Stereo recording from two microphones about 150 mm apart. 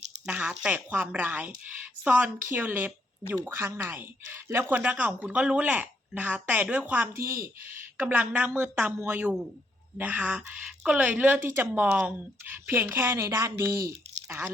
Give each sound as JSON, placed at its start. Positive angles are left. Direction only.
{"t": 0.3, "sound": "a woman's voice", "side_deg": -10}